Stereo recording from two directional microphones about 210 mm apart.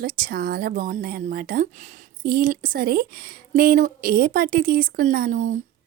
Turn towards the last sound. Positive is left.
turn(degrees=-35)  # may be behind; listen again after turning